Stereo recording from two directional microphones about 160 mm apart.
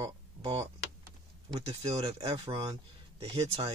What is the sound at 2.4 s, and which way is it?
Speech, 25° right (ahead or behind).